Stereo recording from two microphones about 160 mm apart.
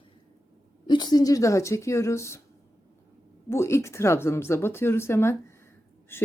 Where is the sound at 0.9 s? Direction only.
25° left (ahead or behind).